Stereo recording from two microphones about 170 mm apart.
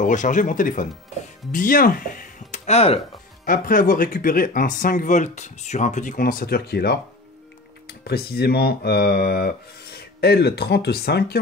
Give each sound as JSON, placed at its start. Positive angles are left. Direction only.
{"t": 0.0, "sound": "speech", "side_deg": 50}
{"t": 3.4, "sound": "speech", "side_deg": 55}